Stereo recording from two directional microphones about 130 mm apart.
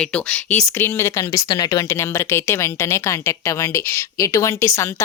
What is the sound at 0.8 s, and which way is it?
A woman's voice, 20° left (ahead or behind).